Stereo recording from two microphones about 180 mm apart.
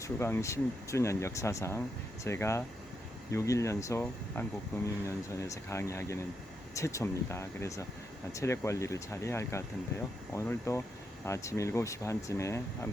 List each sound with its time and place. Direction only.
0.0 s speech: 15° left (ahead or behind)